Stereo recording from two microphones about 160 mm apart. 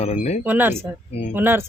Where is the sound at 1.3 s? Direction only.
15° right (ahead or behind).